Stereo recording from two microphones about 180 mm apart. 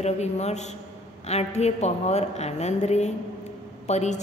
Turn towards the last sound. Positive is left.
turn(degrees=40)  # may be behind; listen again after turning